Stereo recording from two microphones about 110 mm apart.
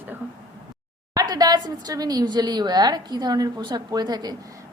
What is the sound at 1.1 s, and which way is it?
A woman's voice, 35° right (ahead or behind).